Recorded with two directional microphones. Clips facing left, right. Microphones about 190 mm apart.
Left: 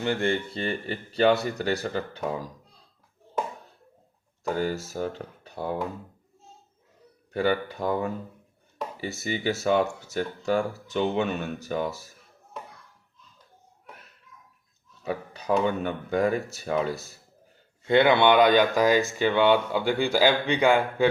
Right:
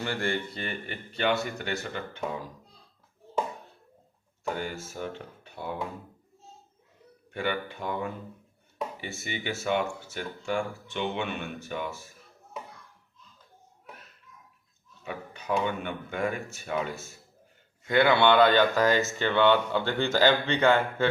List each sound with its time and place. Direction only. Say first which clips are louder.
0.0 s speech: left 5 dB; 20° left (ahead or behind)
4.6 s speech: left 6 dB; 40° left (ahead or behind)
7.3 s speech: left 6 dB; 40° left (ahead or behind)
15.0 s speech: left 6 dB; 35° left (ahead or behind)
17.8 s speech: left 3 dB; 20° left (ahead or behind)